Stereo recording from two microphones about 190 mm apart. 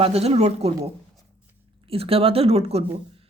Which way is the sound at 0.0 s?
35° right (ahead or behind).